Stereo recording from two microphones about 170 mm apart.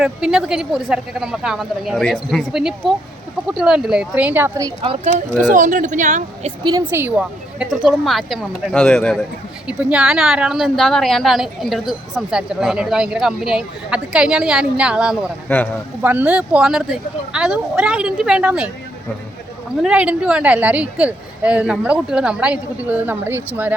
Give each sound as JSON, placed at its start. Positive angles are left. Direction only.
{"t": 0.0, "sound": "a woman's voice", "side_deg": -5}
{"t": 4.8, "sound": "speech", "side_deg": -35}
{"t": 5.5, "sound": "speech", "side_deg": -45}
{"t": 6.7, "sound": "a woman's voice", "side_deg": -15}
{"t": 9.6, "sound": "a woman's voice", "side_deg": -5}
{"t": 15.4, "sound": "speech", "side_deg": 10}
{"t": 16.0, "sound": "a woman's voice", "side_deg": -10}
{"t": 19.8, "sound": "speech", "side_deg": -5}